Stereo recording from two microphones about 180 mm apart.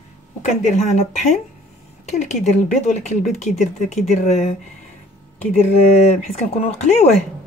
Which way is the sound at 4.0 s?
35° left (ahead or behind).